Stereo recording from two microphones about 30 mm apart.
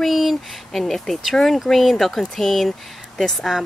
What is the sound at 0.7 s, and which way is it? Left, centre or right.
Speech, centre.